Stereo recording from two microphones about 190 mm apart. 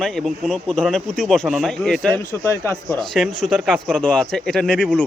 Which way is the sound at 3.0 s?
Centre (ahead or behind).